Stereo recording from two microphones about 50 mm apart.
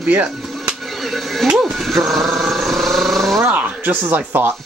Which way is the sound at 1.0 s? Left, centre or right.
Centre.